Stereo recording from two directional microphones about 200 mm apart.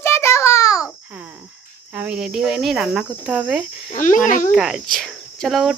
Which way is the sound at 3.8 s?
40° left (ahead or behind).